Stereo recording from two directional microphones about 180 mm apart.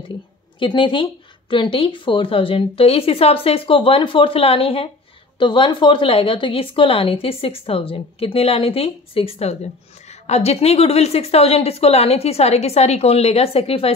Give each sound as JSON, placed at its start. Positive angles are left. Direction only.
{"t": 0.6, "sound": "a woman's voice", "side_deg": 25}